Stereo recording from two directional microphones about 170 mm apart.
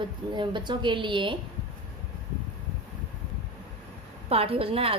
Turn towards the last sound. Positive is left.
turn(degrees=-35)  # may be behind; listen again after turning